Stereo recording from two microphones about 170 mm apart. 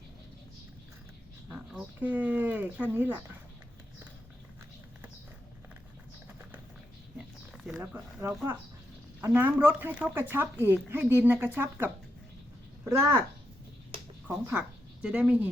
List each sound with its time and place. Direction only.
1.5 s speech: 5° right (ahead or behind)
7.5 s zipper: centre (ahead or behind)
7.9 s speech: 10° right (ahead or behind)
12.9 s speech: 15° right (ahead or behind)
14.3 s speech: 10° right (ahead or behind)